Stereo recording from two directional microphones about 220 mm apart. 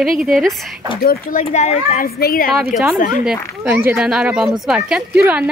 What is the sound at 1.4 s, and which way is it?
A child's voice, 30° left (ahead or behind).